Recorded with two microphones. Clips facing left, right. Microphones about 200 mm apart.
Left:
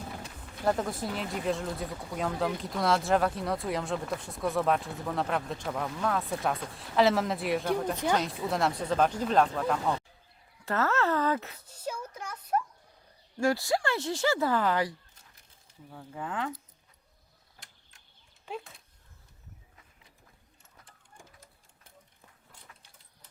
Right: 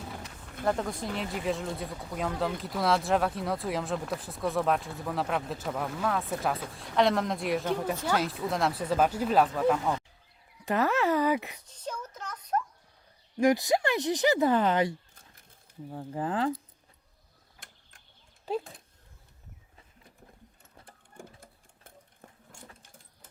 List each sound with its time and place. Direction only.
0.6 s speech: 5° left (ahead or behind)
10.7 s speech: 15° right (ahead or behind)
11.7 s a sound: 10° left (ahead or behind)
13.3 s speech: 20° right (ahead or behind)
15.9 s speech: 35° right (ahead or behind)
18.4 s speech: 35° right (ahead or behind)